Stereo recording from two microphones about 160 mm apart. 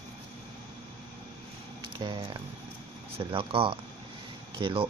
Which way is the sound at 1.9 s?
30° right (ahead or behind).